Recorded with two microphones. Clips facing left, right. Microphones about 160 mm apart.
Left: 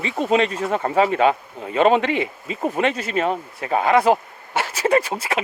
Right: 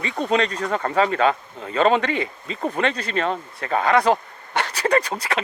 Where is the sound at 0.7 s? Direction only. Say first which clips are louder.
Left 2 dB; 20° left (ahead or behind).